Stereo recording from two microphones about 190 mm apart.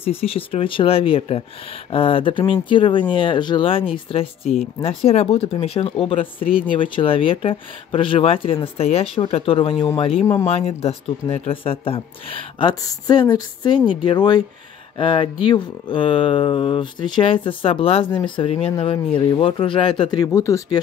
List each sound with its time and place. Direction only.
0.0 s speech: 30° left (ahead or behind)